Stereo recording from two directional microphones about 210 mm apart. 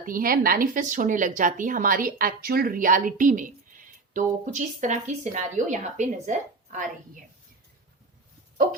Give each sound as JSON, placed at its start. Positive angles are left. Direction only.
{"t": 0.0, "sound": "speech", "side_deg": -45}